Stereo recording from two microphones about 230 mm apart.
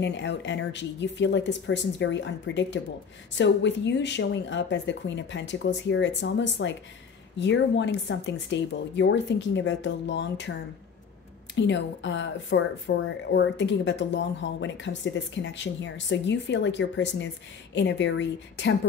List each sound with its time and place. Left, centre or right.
0.0 s speech: left
11.5 s speech: left